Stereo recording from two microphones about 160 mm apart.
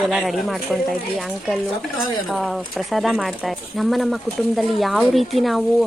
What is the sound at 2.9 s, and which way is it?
Speech, centre (ahead or behind).